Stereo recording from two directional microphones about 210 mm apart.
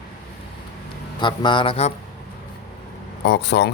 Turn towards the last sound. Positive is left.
turn(degrees=55)  # may be behind; listen again after turning